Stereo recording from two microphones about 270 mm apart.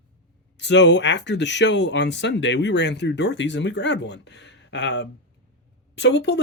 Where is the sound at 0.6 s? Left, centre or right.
Left.